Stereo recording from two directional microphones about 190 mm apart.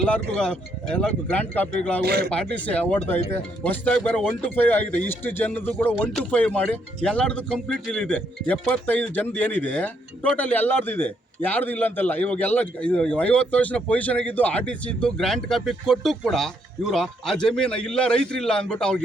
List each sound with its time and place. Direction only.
0.3 s speech: 5° left (ahead or behind)
2.0 s speech: 55° right (ahead or behind)
2.3 s a man's voice: 5° left (ahead or behind)